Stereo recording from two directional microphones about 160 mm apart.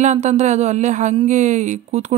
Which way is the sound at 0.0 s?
45° right (ahead or behind).